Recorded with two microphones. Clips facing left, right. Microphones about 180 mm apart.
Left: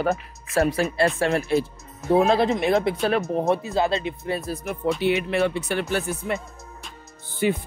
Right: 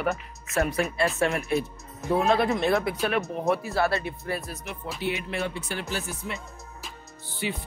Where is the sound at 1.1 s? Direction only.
35° left (ahead or behind).